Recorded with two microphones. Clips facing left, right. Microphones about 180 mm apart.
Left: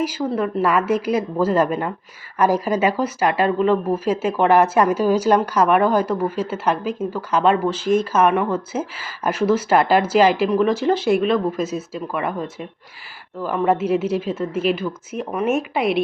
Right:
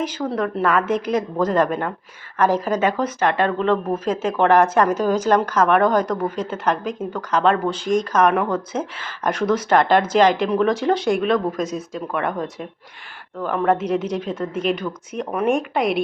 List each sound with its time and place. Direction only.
0.0 s speech: 5° left (ahead or behind)